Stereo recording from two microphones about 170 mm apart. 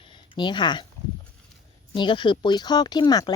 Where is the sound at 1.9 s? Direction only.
30° left (ahead or behind).